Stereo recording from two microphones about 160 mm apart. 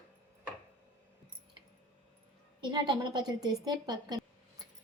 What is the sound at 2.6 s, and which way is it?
A woman's voice, 30° right (ahead or behind).